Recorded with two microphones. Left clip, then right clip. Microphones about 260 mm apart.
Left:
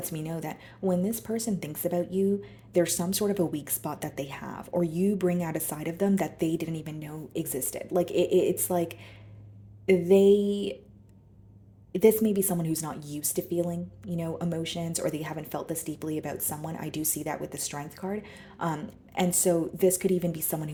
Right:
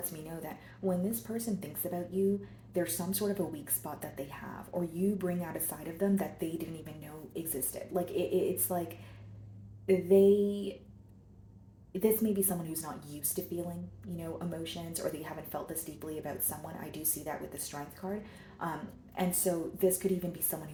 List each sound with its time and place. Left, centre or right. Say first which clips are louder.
0.0 s speech: left 7 dB; left
9.8 s speech: left 4 dB; left
11.9 s speech: left 8 dB; left